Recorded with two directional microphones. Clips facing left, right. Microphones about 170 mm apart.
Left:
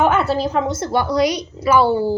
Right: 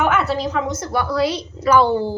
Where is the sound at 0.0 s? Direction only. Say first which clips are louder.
Left 2 dB; 30° left (ahead or behind).